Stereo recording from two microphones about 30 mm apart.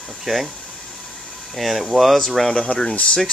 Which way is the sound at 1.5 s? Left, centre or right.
Centre.